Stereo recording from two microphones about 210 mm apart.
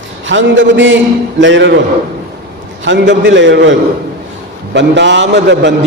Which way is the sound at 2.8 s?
60° right (ahead or behind).